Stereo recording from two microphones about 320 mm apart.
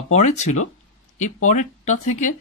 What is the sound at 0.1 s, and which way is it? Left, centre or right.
Speech, left.